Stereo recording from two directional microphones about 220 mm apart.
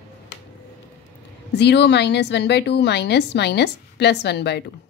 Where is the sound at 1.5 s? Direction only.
50° left (ahead or behind).